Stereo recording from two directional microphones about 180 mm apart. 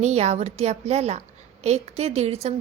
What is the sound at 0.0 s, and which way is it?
A woman's voice, 40° right (ahead or behind).